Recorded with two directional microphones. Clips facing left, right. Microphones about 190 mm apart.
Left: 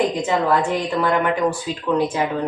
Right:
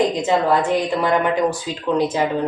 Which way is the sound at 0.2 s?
20° right (ahead or behind).